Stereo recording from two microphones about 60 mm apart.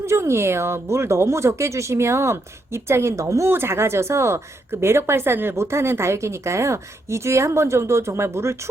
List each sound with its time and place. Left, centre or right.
0.0 s speech: right
3.5 s speech: right